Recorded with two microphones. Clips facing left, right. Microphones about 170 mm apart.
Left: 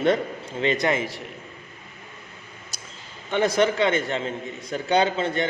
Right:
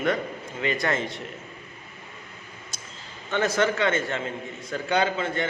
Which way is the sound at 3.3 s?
15° left (ahead or behind).